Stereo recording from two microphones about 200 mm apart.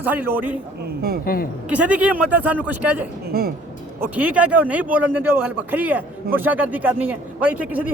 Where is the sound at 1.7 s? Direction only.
5° right (ahead or behind).